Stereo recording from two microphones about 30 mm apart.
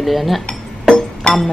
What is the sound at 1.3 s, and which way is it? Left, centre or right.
Music, left.